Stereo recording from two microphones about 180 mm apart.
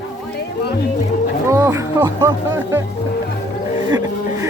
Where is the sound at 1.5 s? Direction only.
15° right (ahead or behind).